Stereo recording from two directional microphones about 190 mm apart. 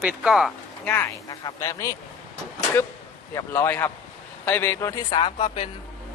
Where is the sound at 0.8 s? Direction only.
10° left (ahead or behind).